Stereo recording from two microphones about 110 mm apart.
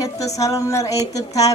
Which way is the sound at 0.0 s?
30° left (ahead or behind).